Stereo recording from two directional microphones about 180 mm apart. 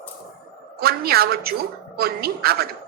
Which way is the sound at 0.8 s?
60° right (ahead or behind).